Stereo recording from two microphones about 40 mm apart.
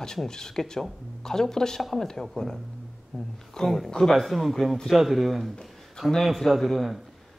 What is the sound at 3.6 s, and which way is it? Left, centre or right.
Speech, centre.